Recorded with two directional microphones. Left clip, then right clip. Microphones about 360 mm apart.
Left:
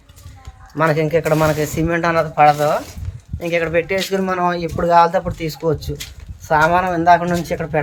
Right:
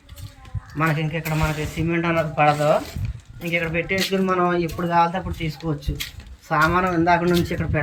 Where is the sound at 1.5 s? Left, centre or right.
Centre.